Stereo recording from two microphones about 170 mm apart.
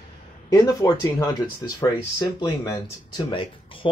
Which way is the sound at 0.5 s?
20° left (ahead or behind).